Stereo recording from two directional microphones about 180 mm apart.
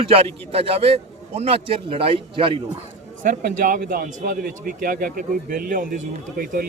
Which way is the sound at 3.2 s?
50° right (ahead or behind).